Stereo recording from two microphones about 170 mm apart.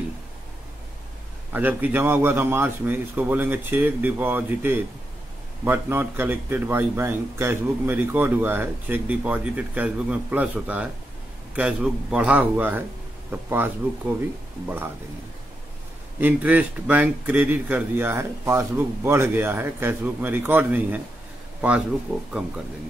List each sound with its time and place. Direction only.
1.5 s speech: 10° right (ahead or behind)
16.2 s speech: 10° right (ahead or behind)